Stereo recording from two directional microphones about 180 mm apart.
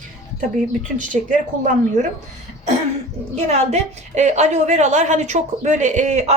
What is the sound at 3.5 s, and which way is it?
A woman's voice, 40° right (ahead or behind).